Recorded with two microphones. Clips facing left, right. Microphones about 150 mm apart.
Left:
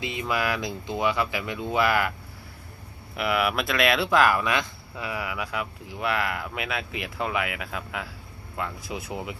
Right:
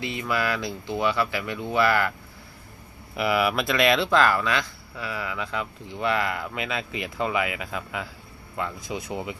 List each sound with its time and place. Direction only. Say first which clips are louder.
0.0 s speech: right 1 dB; 20° left (ahead or behind)
3.2 s speech: right 2 dB; centre (ahead or behind)